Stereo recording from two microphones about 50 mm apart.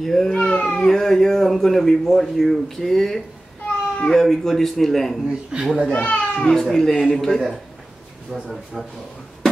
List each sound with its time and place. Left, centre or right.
0.0 s a man's voice: centre
0.3 s speech: left
0.7 s speech: centre
3.6 s a sound: centre
4.2 s a man's voice: centre
5.5 s speech: centre
5.9 s speech: left
6.6 s a man's voice: centre
7.0 s speech: centre
8.3 s a man's voice: centre